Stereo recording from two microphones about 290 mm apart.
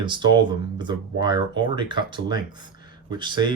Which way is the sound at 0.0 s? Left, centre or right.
Centre.